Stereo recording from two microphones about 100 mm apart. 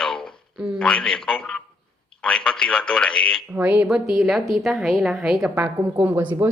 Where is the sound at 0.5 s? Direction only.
5° right (ahead or behind).